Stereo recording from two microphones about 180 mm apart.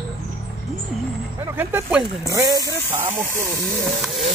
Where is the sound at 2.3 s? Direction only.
20° right (ahead or behind).